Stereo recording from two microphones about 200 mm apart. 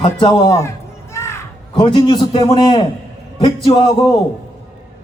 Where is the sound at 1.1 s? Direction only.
15° left (ahead or behind).